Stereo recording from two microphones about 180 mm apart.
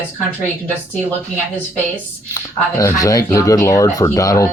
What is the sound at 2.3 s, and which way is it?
Speech, 20° left (ahead or behind).